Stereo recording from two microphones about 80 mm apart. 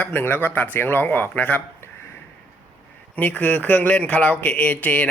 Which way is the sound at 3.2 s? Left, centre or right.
Left.